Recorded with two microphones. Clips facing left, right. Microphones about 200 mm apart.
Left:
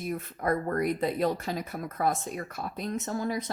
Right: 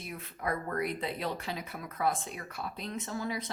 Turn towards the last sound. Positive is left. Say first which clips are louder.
# left 5 dB
turn(degrees=45)  # may be behind; listen again after turning